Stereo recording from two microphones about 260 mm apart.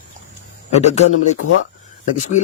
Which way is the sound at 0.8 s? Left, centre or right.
Left.